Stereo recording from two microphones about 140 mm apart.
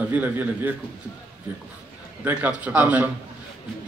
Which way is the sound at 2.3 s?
10° right (ahead or behind).